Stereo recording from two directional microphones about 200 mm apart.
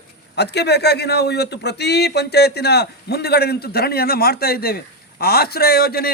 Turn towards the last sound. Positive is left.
turn(degrees=50)  # may be behind; listen again after turning